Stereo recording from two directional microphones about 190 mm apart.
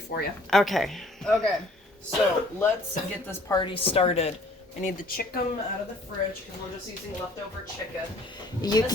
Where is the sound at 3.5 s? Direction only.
25° left (ahead or behind).